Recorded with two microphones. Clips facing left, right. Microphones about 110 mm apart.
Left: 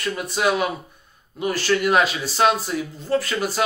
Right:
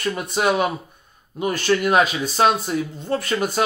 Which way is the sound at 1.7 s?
35° right (ahead or behind).